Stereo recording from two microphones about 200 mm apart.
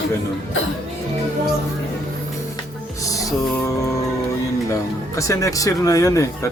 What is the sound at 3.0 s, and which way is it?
Music, 15° left (ahead or behind).